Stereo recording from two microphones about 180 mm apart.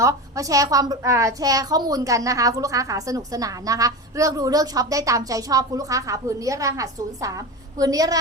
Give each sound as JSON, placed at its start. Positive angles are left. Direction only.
{"t": 0.0, "sound": "a woman's voice", "side_deg": -20}